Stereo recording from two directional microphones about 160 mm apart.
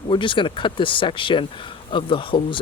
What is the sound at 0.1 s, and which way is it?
Speech, 30° left (ahead or behind).